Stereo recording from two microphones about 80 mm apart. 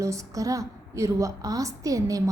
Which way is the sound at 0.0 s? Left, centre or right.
Right.